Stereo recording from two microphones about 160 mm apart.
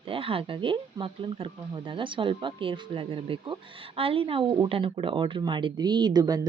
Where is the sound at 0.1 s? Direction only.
35° right (ahead or behind).